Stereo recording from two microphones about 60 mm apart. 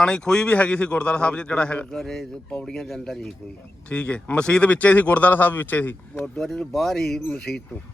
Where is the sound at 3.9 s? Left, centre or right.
Centre.